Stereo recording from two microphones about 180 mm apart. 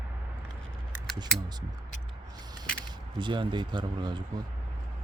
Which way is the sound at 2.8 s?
25° right (ahead or behind).